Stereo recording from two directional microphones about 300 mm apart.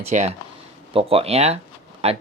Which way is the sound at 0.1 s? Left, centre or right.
Right.